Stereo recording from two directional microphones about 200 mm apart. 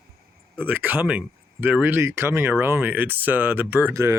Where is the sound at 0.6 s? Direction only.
10° right (ahead or behind).